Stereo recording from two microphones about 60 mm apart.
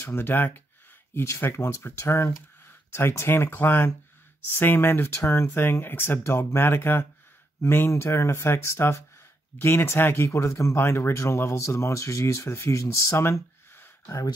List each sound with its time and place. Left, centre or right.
0.0 s speech: left
1.1 s speech: left
7.9 s speech: left
10.2 s speech: left